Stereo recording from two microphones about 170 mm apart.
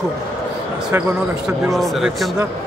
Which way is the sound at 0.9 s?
15° right (ahead or behind).